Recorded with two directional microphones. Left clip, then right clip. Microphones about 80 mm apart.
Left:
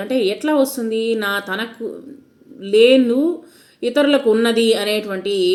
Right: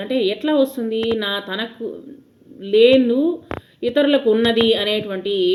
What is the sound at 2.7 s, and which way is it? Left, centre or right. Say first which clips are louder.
Speech: left 1 dB; left.